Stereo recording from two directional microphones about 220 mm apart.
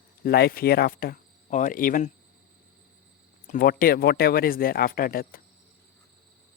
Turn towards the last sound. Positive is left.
turn(degrees=40)  # may be behind; listen again after turning